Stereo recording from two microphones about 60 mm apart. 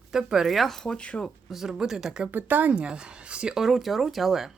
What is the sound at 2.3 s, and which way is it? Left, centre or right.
Speech, right.